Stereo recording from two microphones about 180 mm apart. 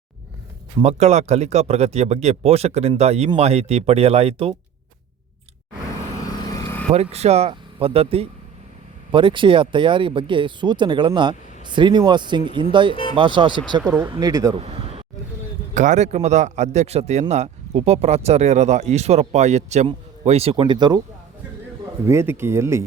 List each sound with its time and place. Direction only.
0.8 s a man's voice: 40° right (ahead or behind)
6.5 s vehicle: 15° left (ahead or behind)
6.9 s a man's voice: 35° right (ahead or behind); by 14.5 s 20° right (ahead or behind)
14.5 s a sound: 35° right (ahead or behind)
15.7 s a man's voice: 40° right (ahead or behind); by 21.0 s 25° right (ahead or behind)
22.0 s speech: 15° right (ahead or behind)